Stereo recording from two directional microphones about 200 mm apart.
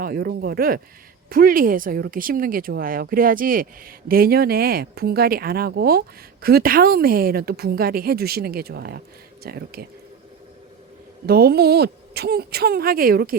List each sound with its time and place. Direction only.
0.0 s speech: 50° right (ahead or behind)
11.3 s speech: 50° right (ahead or behind)